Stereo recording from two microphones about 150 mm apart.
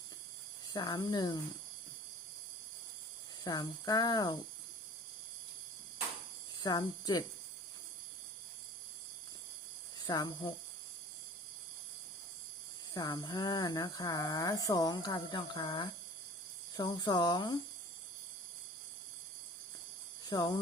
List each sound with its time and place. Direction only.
0.7 s speech: 30° left (ahead or behind)
3.4 s speech: 25° left (ahead or behind)
6.6 s speech: 25° left (ahead or behind)
10.1 s speech: 25° left (ahead or behind)
12.9 s speech: 25° left (ahead or behind)
20.3 s speech: 30° left (ahead or behind)